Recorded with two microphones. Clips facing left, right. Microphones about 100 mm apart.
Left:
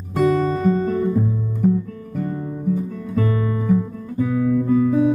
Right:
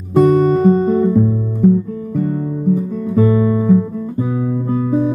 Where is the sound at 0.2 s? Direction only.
40° right (ahead or behind).